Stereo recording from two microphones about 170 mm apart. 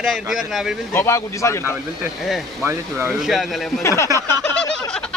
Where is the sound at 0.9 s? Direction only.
15° left (ahead or behind).